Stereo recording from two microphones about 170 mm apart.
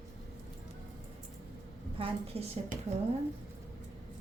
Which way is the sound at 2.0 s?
35° right (ahead or behind).